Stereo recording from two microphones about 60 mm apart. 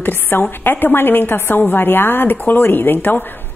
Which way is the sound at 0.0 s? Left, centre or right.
Left.